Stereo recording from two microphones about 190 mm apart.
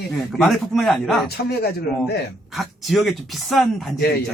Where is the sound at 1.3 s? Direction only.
60° left (ahead or behind).